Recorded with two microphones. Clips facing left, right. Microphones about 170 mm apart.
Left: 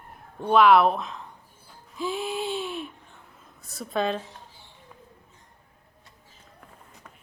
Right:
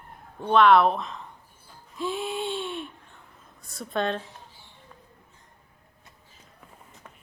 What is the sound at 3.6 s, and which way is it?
Speech, centre (ahead or behind).